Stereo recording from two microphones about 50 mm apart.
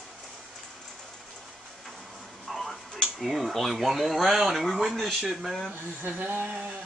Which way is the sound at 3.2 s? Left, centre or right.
Centre.